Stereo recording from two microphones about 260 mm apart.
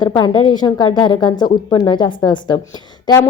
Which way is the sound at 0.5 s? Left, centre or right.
Centre.